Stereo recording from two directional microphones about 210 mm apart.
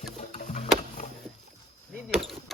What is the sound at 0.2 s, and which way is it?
Music, 35° left (ahead or behind).